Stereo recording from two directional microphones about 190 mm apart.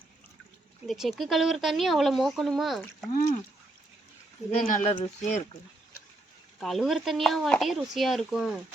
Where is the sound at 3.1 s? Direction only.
40° left (ahead or behind).